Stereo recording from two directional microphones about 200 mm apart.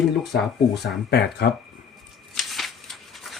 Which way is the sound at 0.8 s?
55° left (ahead or behind).